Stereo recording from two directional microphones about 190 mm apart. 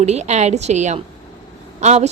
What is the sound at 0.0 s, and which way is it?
A woman's voice, 35° right (ahead or behind).